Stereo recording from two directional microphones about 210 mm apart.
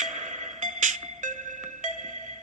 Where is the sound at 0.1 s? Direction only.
35° right (ahead or behind).